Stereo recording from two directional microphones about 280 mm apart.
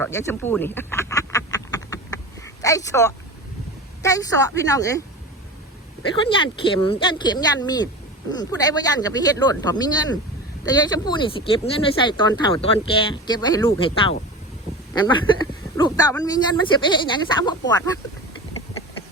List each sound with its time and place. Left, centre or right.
0.0 s duck: centre
4.0 s speech: centre
6.2 s speech: centre